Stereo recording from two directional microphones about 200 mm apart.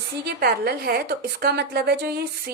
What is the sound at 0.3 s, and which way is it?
A woman's voice, 50° right (ahead or behind).